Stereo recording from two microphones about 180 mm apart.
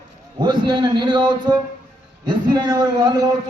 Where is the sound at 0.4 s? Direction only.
25° right (ahead or behind).